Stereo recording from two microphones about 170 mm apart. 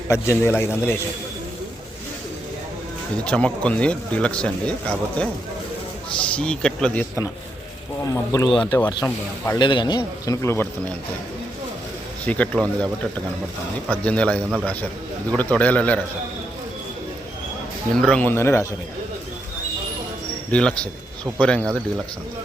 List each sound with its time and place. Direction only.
0.1 s speech: 15° left (ahead or behind)
3.2 s speech: 5° left (ahead or behind)
6.3 s speech: 5° left (ahead or behind)
8.0 s speech: 20° left (ahead or behind)
12.2 s speech: 10° left (ahead or behind)
17.9 s speech: 5° left (ahead or behind)
20.5 s speech: 5° left (ahead or behind)